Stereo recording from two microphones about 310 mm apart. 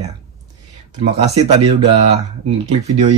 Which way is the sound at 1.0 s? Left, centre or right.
Right.